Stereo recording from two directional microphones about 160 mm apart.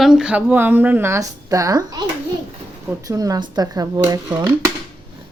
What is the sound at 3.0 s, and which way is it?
A woman's voice, 20° right (ahead or behind).